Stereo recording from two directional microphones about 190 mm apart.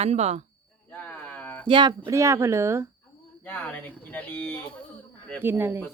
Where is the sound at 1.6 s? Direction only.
25° right (ahead or behind).